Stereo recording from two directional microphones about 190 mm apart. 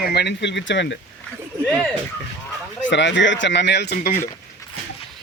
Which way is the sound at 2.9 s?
70° left (ahead or behind).